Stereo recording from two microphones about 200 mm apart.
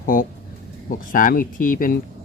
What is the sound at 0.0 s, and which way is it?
Speech, 45° left (ahead or behind).